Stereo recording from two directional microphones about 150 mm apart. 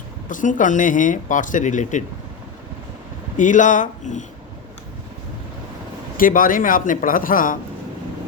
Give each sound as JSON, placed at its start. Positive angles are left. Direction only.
{"t": 0.3, "sound": "speech", "side_deg": 60}
{"t": 3.3, "sound": "speech", "side_deg": 55}
{"t": 6.1, "sound": "speech", "side_deg": 65}